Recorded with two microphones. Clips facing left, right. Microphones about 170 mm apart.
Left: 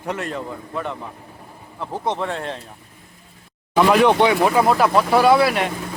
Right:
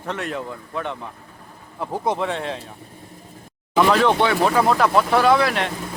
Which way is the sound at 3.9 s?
15° left (ahead or behind).